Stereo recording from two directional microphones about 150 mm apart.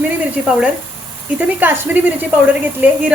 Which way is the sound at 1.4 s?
10° right (ahead or behind).